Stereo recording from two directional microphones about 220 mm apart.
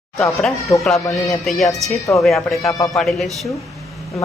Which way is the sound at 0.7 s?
10° left (ahead or behind).